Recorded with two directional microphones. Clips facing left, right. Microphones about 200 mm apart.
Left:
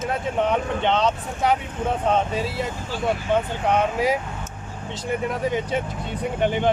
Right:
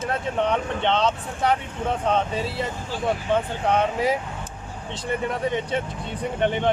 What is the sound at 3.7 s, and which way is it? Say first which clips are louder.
Speech: left 1 dB; centre (ahead or behind).